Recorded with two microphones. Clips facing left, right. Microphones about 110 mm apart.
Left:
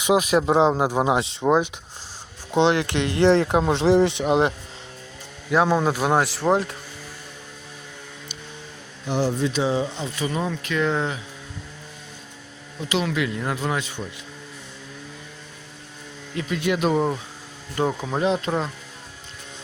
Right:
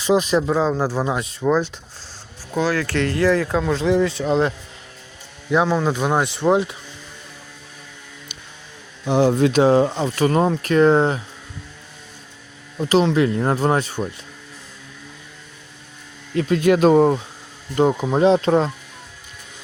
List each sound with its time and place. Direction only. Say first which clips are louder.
0.0 s speech: right 1 dB; 10° left (ahead or behind)
0.4 s speech: left 1 dB; 25° left (ahead or behind)
4.2 s speech: right 1 dB; 15° left (ahead or behind)
5.5 s speech: right 1 dB; 5° left (ahead or behind)
9.3 s speech: right 8 dB; 65° right (ahead or behind)
10.5 s speech: right 9 dB; 45° right (ahead or behind)
12.8 s speech: right 8 dB; 40° right (ahead or behind)
16.4 s speech: right 8 dB; 45° right (ahead or behind)
17.7 s speech: right 6 dB; 20° right (ahead or behind)